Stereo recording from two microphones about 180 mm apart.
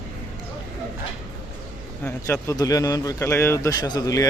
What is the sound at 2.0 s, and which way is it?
A man's voice, 15° left (ahead or behind).